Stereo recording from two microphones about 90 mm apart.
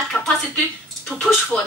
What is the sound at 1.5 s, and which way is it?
Speech, 15° left (ahead or behind).